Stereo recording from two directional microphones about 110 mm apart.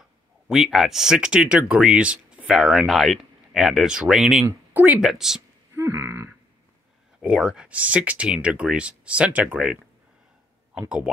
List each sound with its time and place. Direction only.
0.5 s speech: 5° right (ahead or behind)
4.7 s speech: 15° right (ahead or behind)
5.0 s speech: 5° right (ahead or behind)
5.7 s a sound: 25° right (ahead or behind)
7.2 s speech: 5° right (ahead or behind)
10.8 s speech: 15° right (ahead or behind)